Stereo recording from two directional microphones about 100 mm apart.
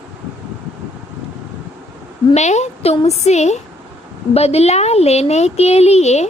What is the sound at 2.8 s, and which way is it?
A woman's voice, 90° left.